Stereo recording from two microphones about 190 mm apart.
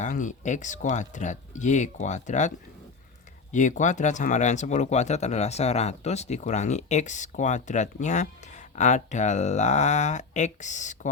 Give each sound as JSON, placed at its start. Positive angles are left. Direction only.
{"t": 0.0, "sound": "speech", "side_deg": 40}
{"t": 3.5, "sound": "speech", "side_deg": 40}